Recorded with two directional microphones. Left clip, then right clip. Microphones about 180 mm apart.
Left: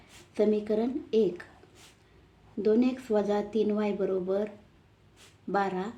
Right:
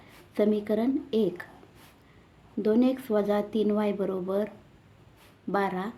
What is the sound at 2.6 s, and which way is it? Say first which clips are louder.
A woman's voice: right 1 dB; 40° right (ahead or behind).